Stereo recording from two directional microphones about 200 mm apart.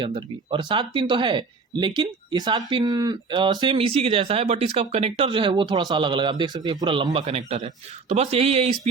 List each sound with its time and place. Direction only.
0.0 s speech: 25° right (ahead or behind)